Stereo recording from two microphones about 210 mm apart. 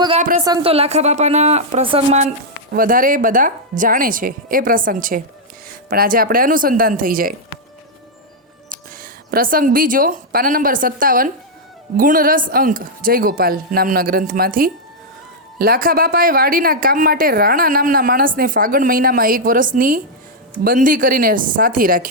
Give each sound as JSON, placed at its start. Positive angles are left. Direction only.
{"t": 0.2, "sound": "a sound", "side_deg": -35}
{"t": 0.4, "sound": "a woman's voice", "side_deg": -20}
{"t": 2.7, "sound": "a woman's voice", "side_deg": -40}
{"t": 8.7, "sound": "a woman's voice", "side_deg": -40}